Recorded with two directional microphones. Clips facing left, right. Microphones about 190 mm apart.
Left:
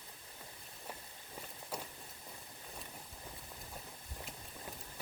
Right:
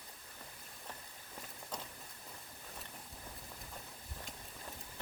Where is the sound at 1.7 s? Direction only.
10° left (ahead or behind).